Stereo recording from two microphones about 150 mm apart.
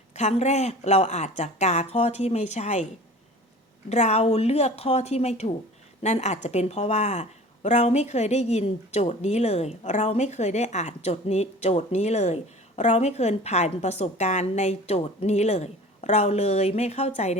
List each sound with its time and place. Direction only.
0.1 s a woman's voice: 50° left (ahead or behind)
3.8 s a woman's voice: 45° left (ahead or behind)